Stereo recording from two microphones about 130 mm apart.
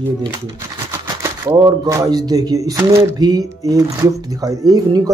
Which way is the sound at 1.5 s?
30° right (ahead or behind).